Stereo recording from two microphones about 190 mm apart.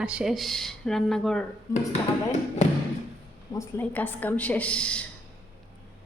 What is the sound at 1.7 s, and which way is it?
Speech, 15° left (ahead or behind).